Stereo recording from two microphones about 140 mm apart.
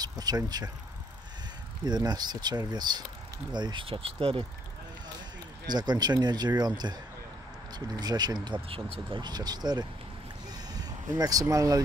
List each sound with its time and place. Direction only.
0.0 s speech: 30° right (ahead or behind)
1.9 s speech: 30° right (ahead or behind)
5.7 s speech: 30° right (ahead or behind)
8.6 s speech: 40° right (ahead or behind); by 11.8 s 25° right (ahead or behind)